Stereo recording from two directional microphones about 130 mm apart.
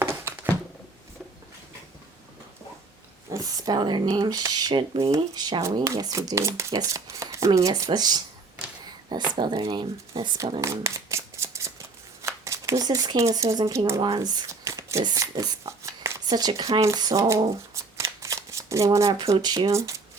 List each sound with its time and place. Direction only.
0.0 s a sound: 20° right (ahead or behind)
3.2 s speech: 25° right (ahead or behind)
9.3 s speech: 35° right (ahead or behind)
10.6 s shuffling cards: 20° right (ahead or behind)
12.2 s speech: 25° right (ahead or behind)
14.0 s speech: 35° right (ahead or behind)
17.9 s shuffling cards: 20° right (ahead or behind)
19.3 s speech: 30° right (ahead or behind)